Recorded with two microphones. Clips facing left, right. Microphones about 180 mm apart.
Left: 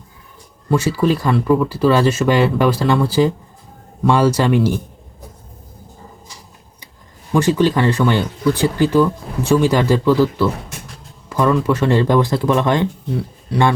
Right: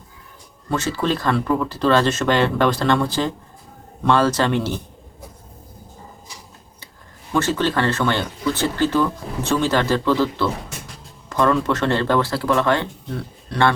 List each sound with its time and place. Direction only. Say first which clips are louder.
0.7 s speech: left 5 dB; 10° left (ahead or behind)
7.3 s speech: left 5 dB; 15° left (ahead or behind)